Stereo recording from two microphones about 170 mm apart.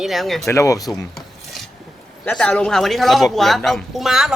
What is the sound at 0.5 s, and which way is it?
Speech, 20° left (ahead or behind).